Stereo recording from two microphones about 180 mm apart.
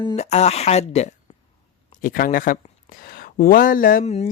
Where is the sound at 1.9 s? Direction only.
50° left (ahead or behind).